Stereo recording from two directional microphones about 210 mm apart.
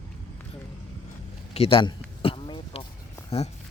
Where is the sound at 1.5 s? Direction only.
25° left (ahead or behind).